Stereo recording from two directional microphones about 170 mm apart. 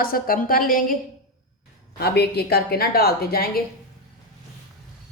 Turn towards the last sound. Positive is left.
turn(degrees=65)  # may be behind; listen again after turning